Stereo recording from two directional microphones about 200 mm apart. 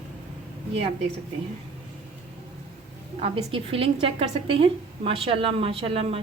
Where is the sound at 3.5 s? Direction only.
30° right (ahead or behind).